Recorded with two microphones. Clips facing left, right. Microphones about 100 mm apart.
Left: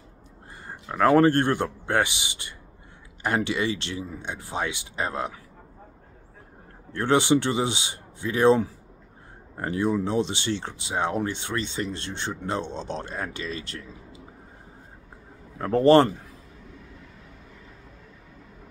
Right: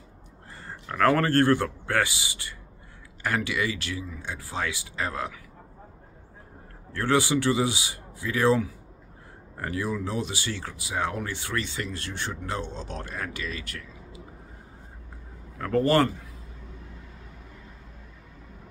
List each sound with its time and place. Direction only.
0.7 s speech: 15° left (ahead or behind)
6.9 s speech: 20° left (ahead or behind)
15.5 s speech: 25° left (ahead or behind)